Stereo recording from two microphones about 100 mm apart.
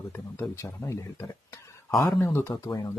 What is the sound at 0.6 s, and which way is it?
Speech, 30° left (ahead or behind).